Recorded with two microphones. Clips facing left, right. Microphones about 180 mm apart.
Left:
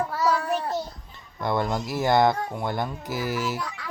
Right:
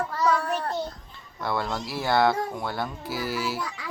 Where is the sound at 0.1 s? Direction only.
5° left (ahead or behind).